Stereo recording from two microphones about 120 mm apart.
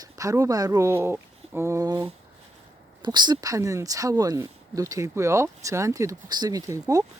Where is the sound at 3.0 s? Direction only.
35° right (ahead or behind).